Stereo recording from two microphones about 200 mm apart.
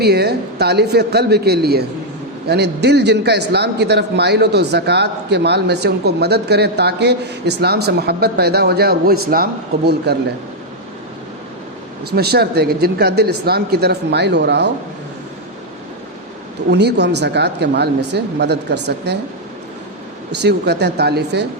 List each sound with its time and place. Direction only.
0.0 s a man's voice: 55° right (ahead or behind)
12.1 s speech: 55° right (ahead or behind)
16.6 s a man's voice: 55° right (ahead or behind)
20.3 s a man's voice: 55° right (ahead or behind)